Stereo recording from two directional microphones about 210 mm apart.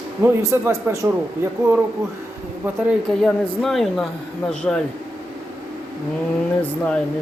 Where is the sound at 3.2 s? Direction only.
Centre (ahead or behind).